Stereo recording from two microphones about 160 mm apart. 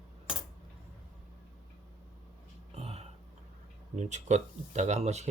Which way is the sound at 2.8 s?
40° right (ahead or behind).